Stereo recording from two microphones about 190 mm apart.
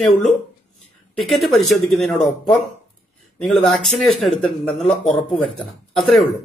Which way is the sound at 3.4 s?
Centre (ahead or behind).